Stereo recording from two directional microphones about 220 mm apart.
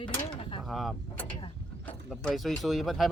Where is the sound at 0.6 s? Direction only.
Centre (ahead or behind).